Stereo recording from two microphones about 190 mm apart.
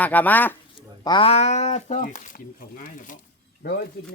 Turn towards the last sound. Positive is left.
turn(degrees=55)  # may be behind; listen again after turning